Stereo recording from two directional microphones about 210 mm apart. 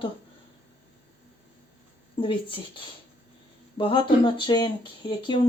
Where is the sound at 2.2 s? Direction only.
25° left (ahead or behind).